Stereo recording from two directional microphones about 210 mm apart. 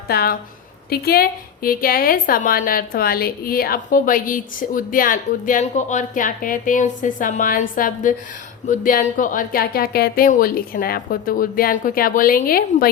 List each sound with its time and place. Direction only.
0.1 s a woman's voice: 45° left (ahead or behind)